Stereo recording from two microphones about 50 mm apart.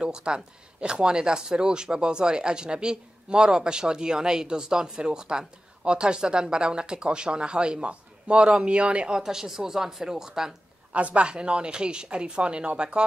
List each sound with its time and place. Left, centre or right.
0.0 s a woman's voice: centre
9.2 s speech: centre
10.9 s a woman's voice: right